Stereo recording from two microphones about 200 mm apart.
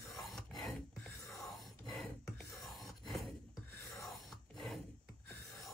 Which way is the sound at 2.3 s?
Centre (ahead or behind).